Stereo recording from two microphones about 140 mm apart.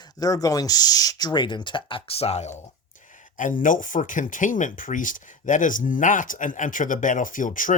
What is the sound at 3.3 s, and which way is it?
Speech, 70° left (ahead or behind).